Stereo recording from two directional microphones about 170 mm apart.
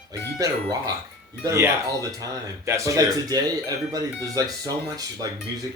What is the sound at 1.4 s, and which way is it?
Speech, 20° right (ahead or behind).